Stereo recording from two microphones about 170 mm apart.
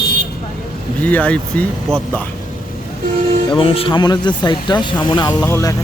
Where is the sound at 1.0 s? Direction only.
10° left (ahead or behind).